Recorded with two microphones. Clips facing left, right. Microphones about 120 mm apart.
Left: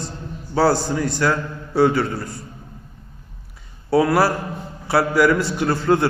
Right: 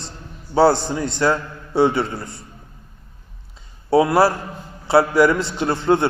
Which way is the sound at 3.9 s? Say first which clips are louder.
Right 2 dB; 25° right (ahead or behind).